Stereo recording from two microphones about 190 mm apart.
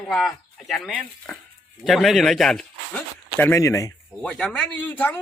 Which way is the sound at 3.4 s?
15° left (ahead or behind).